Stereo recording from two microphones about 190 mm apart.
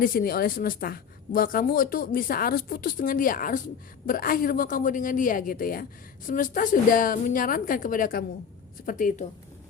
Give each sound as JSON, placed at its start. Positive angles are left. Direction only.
{"t": 0.0, "sound": "a woman's voice", "side_deg": 50}